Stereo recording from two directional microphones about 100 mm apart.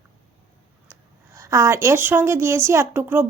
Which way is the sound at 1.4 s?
30° right (ahead or behind).